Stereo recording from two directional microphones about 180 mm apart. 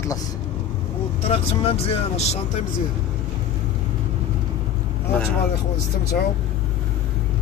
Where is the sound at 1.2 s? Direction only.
35° left (ahead or behind).